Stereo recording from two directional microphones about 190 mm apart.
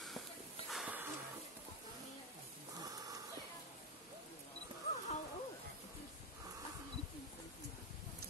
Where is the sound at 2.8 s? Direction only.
20° right (ahead or behind).